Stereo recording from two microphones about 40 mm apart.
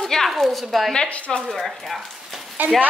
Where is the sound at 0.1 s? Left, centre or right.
Centre.